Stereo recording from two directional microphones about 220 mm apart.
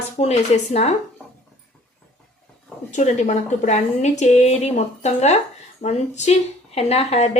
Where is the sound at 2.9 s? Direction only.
30° left (ahead or behind).